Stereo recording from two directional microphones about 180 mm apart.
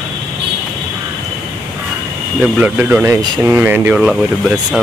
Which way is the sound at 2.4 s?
10° right (ahead or behind).